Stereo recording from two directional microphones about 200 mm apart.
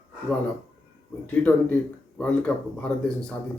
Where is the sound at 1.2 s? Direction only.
10° left (ahead or behind).